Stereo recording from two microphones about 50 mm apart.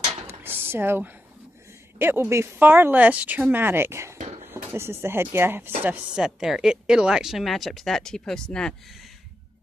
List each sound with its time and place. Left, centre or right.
0.4 s a sound: right
2.0 s a woman's voice: right
2.6 s speech: right
3.0 s speech: right
6.2 s speech: centre